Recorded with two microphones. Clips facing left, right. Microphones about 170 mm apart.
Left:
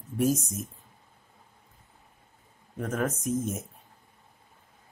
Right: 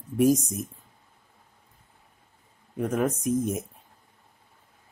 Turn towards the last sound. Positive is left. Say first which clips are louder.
# right 4 dB
turn(degrees=-10)  # may be behind; listen again after turning